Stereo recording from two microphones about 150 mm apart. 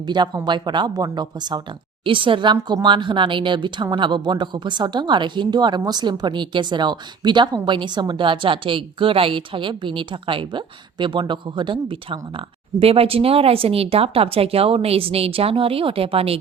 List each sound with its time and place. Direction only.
0.1 s speech: 30° right (ahead or behind)